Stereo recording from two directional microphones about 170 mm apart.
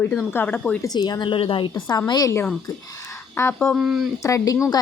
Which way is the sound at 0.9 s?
25° left (ahead or behind).